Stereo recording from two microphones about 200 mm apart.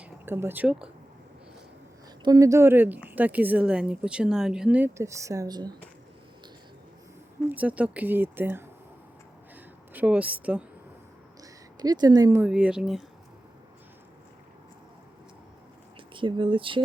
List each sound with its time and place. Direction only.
0.0 s speech: 10° right (ahead or behind)
2.2 s a woman's voice: 15° right (ahead or behind)
7.5 s a woman's voice: 5° right (ahead or behind)
9.9 s a woman's voice: 5° right (ahead or behind)
11.8 s a woman's voice: 20° right (ahead or behind); by 13.1 s centre (ahead or behind)
16.1 s speech: 25° right (ahead or behind)